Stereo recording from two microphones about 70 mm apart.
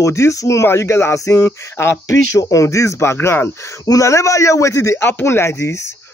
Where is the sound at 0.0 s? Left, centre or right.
Left.